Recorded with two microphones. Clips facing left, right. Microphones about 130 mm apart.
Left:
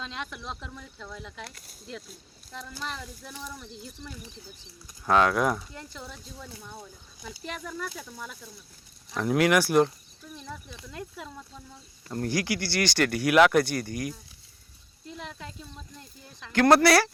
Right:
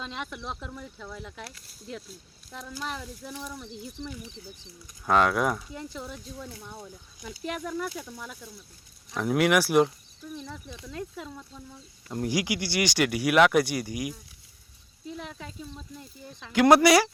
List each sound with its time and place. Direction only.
0.0 s speech: 5° right (ahead or behind)
5.0 s speech: centre (ahead or behind)
5.8 s speech: 15° right (ahead or behind)
10.7 s speech: 25° right (ahead or behind)
12.0 s speech: 15° right (ahead or behind)